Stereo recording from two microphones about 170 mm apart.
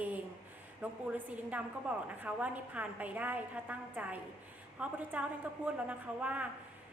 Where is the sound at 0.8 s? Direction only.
10° right (ahead or behind).